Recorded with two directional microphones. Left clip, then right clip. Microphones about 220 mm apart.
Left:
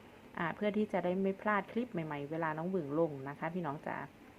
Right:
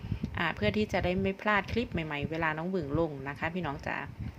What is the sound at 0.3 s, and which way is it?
A woman's voice, 10° right (ahead or behind).